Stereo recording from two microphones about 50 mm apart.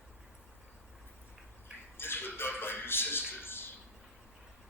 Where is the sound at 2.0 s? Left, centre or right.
Left.